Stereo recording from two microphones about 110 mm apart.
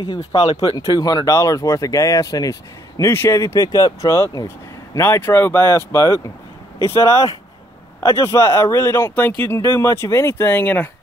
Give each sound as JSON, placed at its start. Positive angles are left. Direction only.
{"t": 0.7, "sound": "speech", "side_deg": 35}